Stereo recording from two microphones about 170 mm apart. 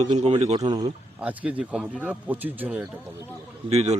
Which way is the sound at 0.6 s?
25° right (ahead or behind).